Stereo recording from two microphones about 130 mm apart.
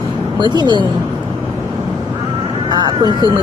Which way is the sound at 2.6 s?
35° right (ahead or behind).